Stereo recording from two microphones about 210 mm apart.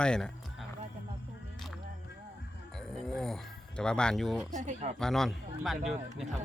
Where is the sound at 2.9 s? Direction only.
Centre (ahead or behind).